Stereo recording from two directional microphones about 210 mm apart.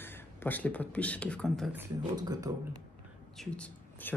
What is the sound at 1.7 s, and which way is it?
Speech, 15° right (ahead or behind).